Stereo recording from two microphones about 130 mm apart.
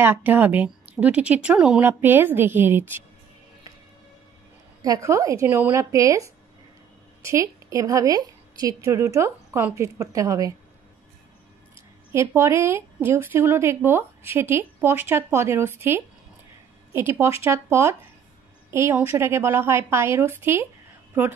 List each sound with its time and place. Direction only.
0.0 s speech: 15° right (ahead or behind)
4.8 s a woman's voice: 25° right (ahead or behind)
12.1 s a woman's voice: 20° right (ahead or behind)